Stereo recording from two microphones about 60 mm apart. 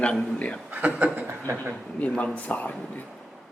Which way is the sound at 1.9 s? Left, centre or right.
Left.